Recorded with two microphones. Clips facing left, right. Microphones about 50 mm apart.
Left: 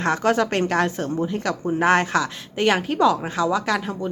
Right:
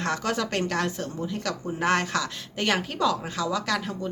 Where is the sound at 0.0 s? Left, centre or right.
Left.